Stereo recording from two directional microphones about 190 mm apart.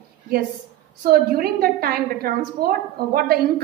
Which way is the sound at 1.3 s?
50° right (ahead or behind).